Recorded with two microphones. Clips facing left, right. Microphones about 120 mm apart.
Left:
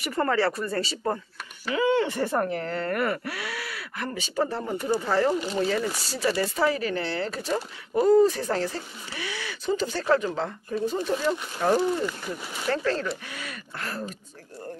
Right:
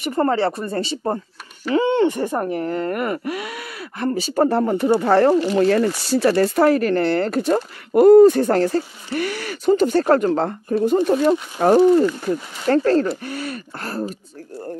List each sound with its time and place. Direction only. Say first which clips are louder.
0.0 s speech: right 5 dB; 25° right (ahead or behind)
4.4 s speech: right 10 dB; 60° right (ahead or behind); by 14.0 s 35° right (ahead or behind)